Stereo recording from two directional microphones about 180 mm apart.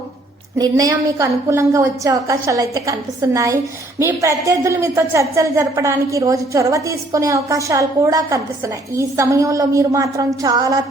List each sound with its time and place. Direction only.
0.6 s a woman's voice: 20° right (ahead or behind)